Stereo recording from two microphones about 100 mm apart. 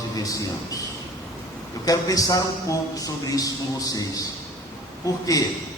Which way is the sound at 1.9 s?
35° left (ahead or behind).